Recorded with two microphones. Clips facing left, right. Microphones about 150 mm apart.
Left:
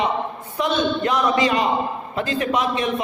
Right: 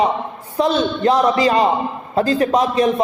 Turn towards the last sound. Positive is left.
turn(degrees=-35)  # may be behind; listen again after turning